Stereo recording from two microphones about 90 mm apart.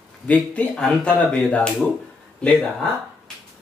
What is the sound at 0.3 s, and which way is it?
Speech, 15° left (ahead or behind).